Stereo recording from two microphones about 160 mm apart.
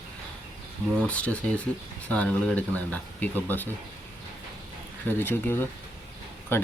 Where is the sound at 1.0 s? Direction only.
10° left (ahead or behind).